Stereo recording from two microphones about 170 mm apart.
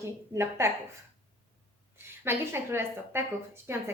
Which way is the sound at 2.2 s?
15° right (ahead or behind).